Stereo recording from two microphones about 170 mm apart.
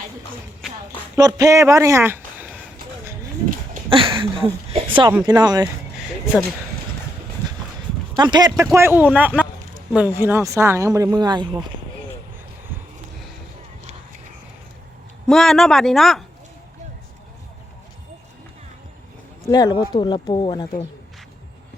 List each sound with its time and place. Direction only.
1.1 s speech: 20° right (ahead or behind)
3.8 s speech: 30° right (ahead or behind)
8.1 s speech: 25° right (ahead or behind)
8.7 s speech: 15° right (ahead or behind)
15.3 s speech: centre (ahead or behind)
19.5 s speech: 20° left (ahead or behind)